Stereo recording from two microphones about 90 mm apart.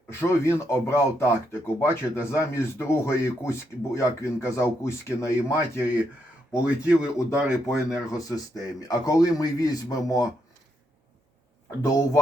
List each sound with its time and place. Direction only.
0.1 s a man's voice: 30° left (ahead or behind)
6.6 s speech: 15° right (ahead or behind)
8.1 s a man's voice: 40° left (ahead or behind)
11.8 s a man's voice: 40° left (ahead or behind)